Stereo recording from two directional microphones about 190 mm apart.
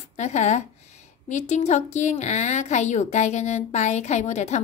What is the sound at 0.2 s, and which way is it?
A woman's voice, 40° left (ahead or behind).